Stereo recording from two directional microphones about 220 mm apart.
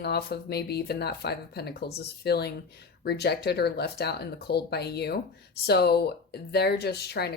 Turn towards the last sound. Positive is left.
turn(degrees=45)  # may be behind; listen again after turning